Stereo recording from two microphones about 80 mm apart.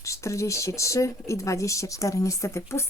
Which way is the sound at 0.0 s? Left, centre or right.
Left.